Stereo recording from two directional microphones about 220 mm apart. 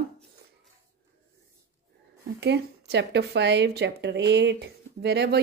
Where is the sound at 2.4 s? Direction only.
50° right (ahead or behind).